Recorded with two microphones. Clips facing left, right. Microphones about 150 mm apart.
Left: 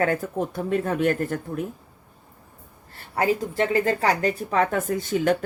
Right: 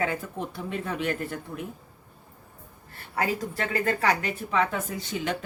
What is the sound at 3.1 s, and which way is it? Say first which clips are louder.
A woman's voice: left 5 dB; 30° left (ahead or behind).